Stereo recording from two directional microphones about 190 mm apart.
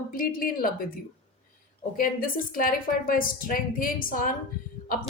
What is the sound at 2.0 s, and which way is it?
A woman's voice, 45° left (ahead or behind).